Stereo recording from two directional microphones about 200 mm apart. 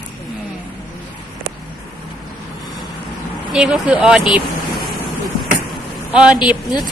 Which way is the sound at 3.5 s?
5° right (ahead or behind).